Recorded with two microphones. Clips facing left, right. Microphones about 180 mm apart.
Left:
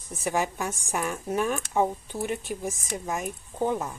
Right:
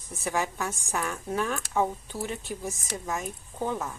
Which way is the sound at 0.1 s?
20° left (ahead or behind).